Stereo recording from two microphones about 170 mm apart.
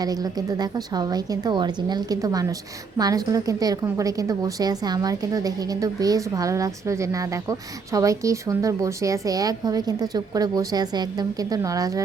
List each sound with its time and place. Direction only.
0.0 s a woman's voice: 20° right (ahead or behind)